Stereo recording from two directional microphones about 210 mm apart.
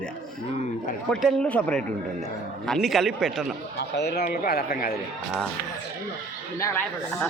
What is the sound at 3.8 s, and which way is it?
A man's voice, 50° left (ahead or behind).